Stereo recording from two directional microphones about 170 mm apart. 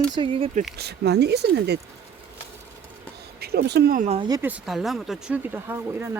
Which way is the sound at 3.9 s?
40° right (ahead or behind).